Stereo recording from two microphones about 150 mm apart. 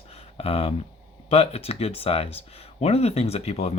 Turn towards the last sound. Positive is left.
turn(degrees=45)  # may be behind; listen again after turning